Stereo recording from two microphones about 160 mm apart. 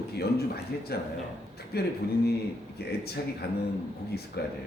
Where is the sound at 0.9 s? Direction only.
80° left.